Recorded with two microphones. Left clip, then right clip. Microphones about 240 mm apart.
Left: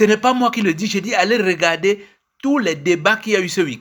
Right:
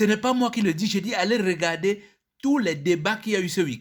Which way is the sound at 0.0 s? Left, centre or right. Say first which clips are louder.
Left 8 dB; right.